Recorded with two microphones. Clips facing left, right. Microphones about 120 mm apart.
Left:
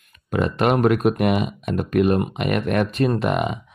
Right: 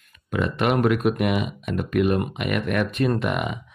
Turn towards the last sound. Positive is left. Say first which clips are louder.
# left 3 dB
turn(degrees=30)  # may be behind; listen again after turning